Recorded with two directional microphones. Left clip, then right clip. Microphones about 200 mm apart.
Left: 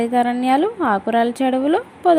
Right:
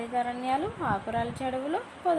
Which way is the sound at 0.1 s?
40° left (ahead or behind).